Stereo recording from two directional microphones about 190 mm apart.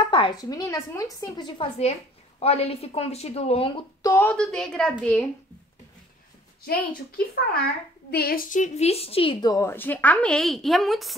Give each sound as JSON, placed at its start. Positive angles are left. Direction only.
{"t": 0.0, "sound": "a woman's voice", "side_deg": 25}
{"t": 4.0, "sound": "a woman's voice", "side_deg": 10}
{"t": 6.6, "sound": "a woman's voice", "side_deg": 50}